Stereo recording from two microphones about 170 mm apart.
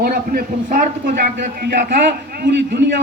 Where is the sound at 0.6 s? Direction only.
50° right (ahead or behind).